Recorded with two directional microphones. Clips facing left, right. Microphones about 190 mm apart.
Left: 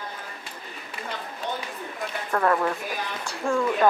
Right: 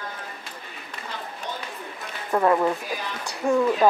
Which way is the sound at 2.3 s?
15° right (ahead or behind).